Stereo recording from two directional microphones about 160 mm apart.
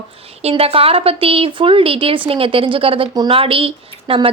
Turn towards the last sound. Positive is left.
turn(degrees=-35)  # may be behind; listen again after turning